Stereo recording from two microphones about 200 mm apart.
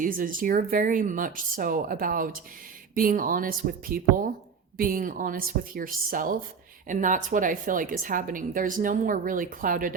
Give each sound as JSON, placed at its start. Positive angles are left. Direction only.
{"t": 0.0, "sound": "a woman's voice", "side_deg": -45}